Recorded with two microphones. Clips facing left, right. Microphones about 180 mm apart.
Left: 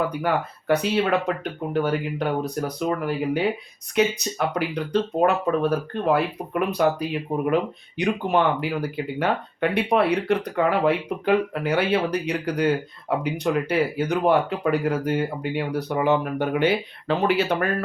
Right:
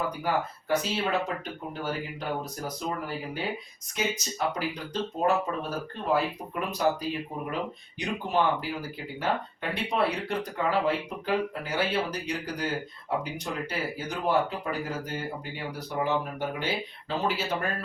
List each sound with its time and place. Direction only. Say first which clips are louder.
0.7 s speech: left 7 dB; 60° left (ahead or behind)